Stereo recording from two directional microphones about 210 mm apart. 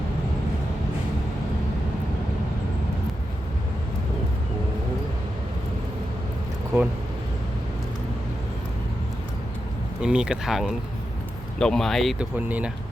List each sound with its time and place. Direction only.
10.0 s speech: 5° right (ahead or behind)